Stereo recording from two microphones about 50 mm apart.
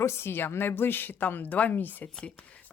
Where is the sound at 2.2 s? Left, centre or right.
Left.